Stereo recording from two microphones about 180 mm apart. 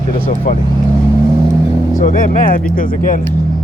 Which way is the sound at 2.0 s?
45° left (ahead or behind).